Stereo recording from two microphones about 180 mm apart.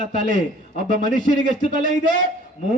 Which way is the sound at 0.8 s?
50° right (ahead or behind).